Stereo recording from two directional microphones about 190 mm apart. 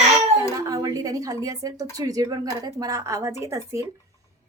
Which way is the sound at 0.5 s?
20° right (ahead or behind).